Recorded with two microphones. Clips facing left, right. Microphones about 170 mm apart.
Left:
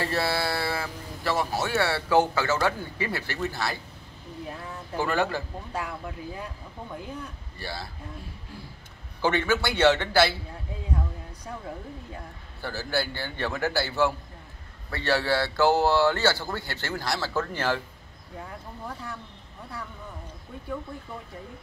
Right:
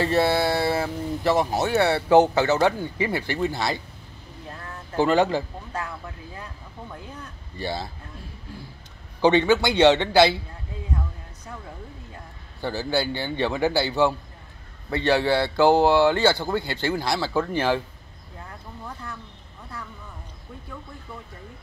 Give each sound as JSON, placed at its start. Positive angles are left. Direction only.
{"t": 0.0, "sound": "speech", "side_deg": -20}
{"t": 5.0, "sound": "a man's voice", "side_deg": -20}
{"t": 5.7, "sound": "speech", "side_deg": 10}
{"t": 7.5, "sound": "a man's voice", "side_deg": -20}
{"t": 9.2, "sound": "a man's voice", "side_deg": -20}
{"t": 12.6, "sound": "speech", "side_deg": -20}